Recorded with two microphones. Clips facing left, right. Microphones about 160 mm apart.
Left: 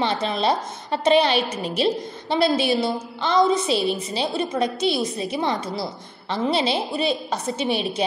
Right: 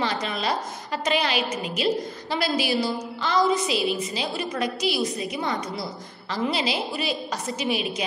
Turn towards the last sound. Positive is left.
turn(degrees=25)  # may be behind; listen again after turning